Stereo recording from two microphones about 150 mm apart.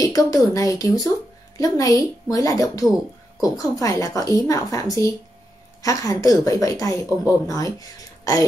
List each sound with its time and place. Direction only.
0.0 s speech: 25° left (ahead or behind)